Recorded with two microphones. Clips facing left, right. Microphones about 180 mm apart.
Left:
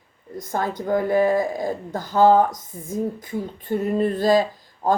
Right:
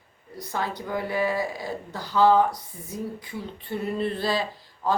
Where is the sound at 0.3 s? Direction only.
45° left (ahead or behind).